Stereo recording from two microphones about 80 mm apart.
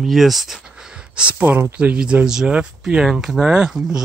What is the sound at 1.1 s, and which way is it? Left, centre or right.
Speech, centre.